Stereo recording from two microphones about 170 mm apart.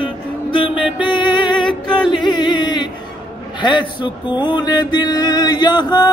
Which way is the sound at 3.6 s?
25° left (ahead or behind).